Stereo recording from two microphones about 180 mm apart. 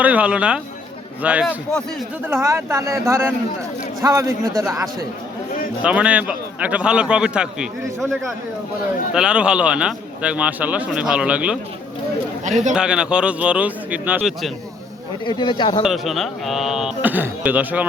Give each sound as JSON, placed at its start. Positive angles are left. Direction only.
{"t": 0.0, "sound": "a man's voice", "side_deg": -10}
{"t": 9.1, "sound": "a man's voice", "side_deg": -5}
{"t": 12.5, "sound": "a man's voice", "side_deg": -40}
{"t": 12.7, "sound": "a man's voice", "side_deg": -5}
{"t": 15.3, "sound": "speech", "side_deg": 25}
{"t": 15.8, "sound": "a man's voice", "side_deg": 0}